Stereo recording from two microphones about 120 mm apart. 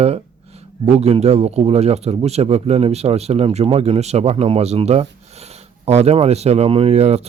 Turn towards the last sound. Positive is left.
turn(degrees=-60)  # may be behind; listen again after turning